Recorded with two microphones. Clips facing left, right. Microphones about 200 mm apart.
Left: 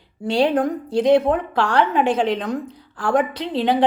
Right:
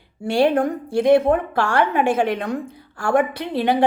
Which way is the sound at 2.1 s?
55° right (ahead or behind).